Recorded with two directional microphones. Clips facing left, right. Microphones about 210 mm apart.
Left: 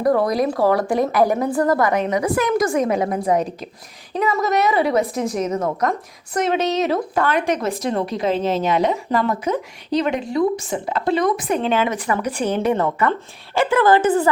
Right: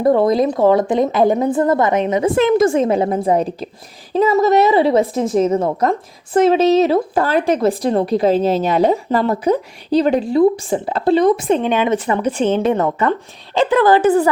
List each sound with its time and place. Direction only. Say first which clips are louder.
0.0 s speech: right 4 dB; 25° right (ahead or behind)
11.6 s speech: right 2 dB; 20° right (ahead or behind)
11.9 s speech: right 4 dB; 30° right (ahead or behind)
14.0 s speech: right 4 dB; 15° left (ahead or behind)